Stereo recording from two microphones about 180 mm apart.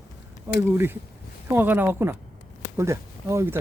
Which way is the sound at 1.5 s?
10° right (ahead or behind).